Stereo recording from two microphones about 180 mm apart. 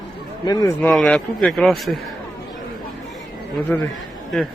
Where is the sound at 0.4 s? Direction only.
20° left (ahead or behind).